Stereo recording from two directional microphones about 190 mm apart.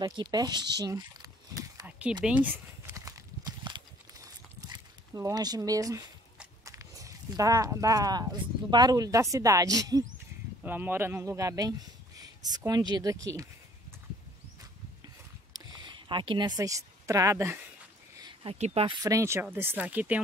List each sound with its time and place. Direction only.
0.0 s speech: 20° right (ahead or behind)
1.9 s a sound: 10° right (ahead or behind)
6.6 s speech: 15° right (ahead or behind)
15.5 s a sound: 20° right (ahead or behind)
18.2 s speech: 30° right (ahead or behind)
19.0 s speech: 15° right (ahead or behind)